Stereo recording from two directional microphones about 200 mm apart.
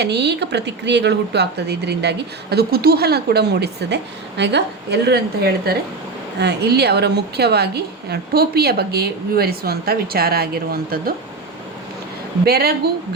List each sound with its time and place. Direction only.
0.0 s a woman's voice: 55° right (ahead or behind)
12.5 s a woman's voice: 50° right (ahead or behind)